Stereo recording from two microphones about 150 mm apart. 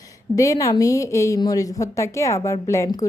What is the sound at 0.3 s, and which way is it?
A woman's voice, 20° left (ahead or behind).